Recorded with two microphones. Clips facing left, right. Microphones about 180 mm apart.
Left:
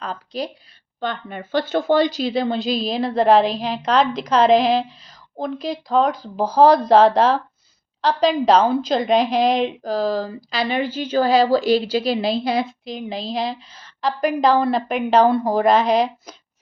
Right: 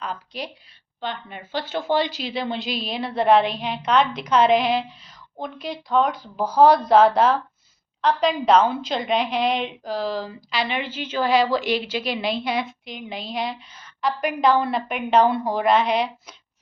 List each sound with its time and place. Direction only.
0.0 s a woman's voice: 35° left (ahead or behind)
0.9 s a woman's voice: 45° left (ahead or behind)